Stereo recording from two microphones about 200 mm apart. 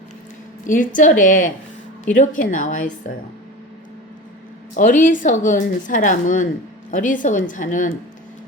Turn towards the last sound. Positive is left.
turn(degrees=40)  # may be behind; listen again after turning